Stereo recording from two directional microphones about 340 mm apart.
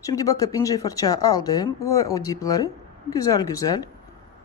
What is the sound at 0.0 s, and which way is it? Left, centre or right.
Speech, centre.